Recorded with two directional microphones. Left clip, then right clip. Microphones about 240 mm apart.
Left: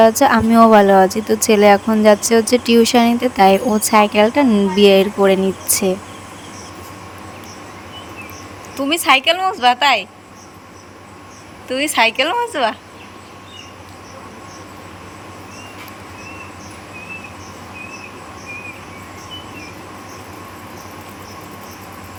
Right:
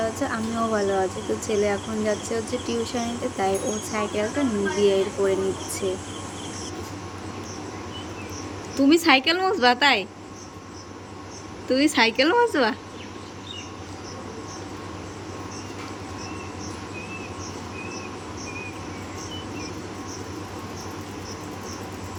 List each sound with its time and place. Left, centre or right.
0.0 s speech: left
8.8 s a woman's voice: centre
11.7 s a woman's voice: centre